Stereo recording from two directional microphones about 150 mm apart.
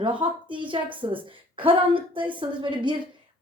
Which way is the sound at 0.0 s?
35° right (ahead or behind).